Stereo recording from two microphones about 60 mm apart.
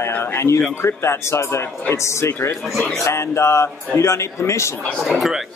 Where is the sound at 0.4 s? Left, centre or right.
Left.